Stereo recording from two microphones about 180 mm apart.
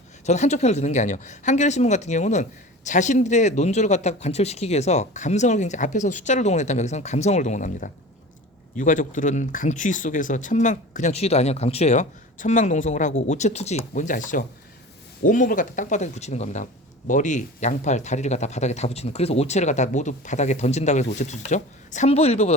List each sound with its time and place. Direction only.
0.3 s speech: 40° left (ahead or behind)